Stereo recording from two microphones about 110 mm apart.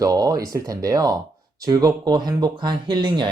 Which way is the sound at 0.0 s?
30° right (ahead or behind).